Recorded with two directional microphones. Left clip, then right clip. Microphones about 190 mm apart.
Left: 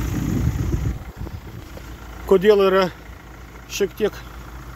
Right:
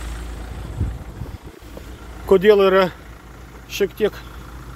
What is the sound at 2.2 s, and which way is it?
Speech, centre (ahead or behind).